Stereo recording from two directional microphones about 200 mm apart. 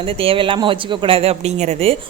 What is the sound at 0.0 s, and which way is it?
Speech, 30° right (ahead or behind).